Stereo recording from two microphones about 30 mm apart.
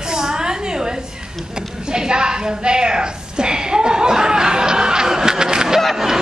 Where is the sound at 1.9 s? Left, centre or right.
Right.